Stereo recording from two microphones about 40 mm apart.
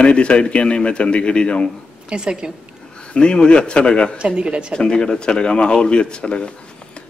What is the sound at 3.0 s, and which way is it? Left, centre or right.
A man's voice, left.